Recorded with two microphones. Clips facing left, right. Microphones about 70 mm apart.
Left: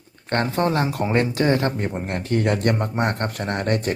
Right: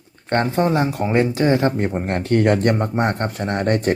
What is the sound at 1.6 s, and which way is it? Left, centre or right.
Speech, right.